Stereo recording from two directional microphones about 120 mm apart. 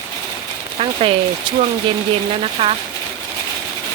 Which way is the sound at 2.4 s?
55° right (ahead or behind).